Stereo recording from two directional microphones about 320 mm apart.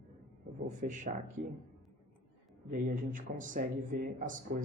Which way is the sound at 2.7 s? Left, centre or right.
Right.